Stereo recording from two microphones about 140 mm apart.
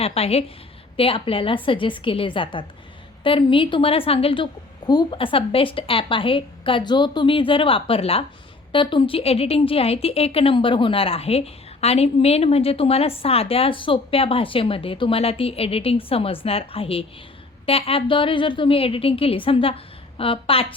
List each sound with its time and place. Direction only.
0.0 s a woman's voice: 45° left (ahead or behind)